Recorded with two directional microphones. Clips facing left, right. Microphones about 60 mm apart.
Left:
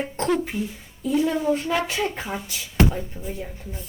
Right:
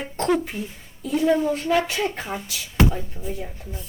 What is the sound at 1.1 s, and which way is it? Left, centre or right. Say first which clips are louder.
A woman's voice: right 1 dB; centre.